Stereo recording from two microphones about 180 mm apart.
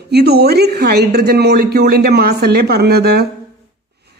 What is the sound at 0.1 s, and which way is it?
A woman's voice, 60° right (ahead or behind).